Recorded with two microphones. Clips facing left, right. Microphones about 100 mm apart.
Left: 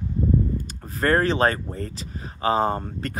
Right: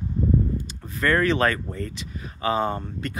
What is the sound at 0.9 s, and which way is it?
Speech, 35° left (ahead or behind).